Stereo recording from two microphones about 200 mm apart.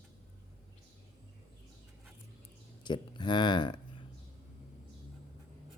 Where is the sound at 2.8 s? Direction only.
25° left (ahead or behind).